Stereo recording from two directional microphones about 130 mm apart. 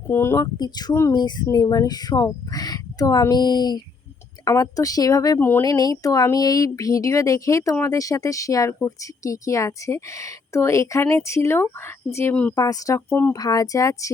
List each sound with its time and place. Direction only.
0.1 s speech: 20° left (ahead or behind)
0.5 s speech: 30° left (ahead or behind)
5.4 s speech: 15° left (ahead or behind)
5.6 s speech: 30° left (ahead or behind); by 12.5 s 10° left (ahead or behind)
12.5 s speech: 25° left (ahead or behind)
13.1 s speech: 15° left (ahead or behind)
13.3 s speech: 30° left (ahead or behind)